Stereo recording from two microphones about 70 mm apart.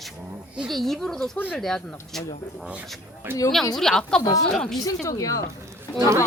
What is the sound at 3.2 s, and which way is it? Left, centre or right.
Speech, right.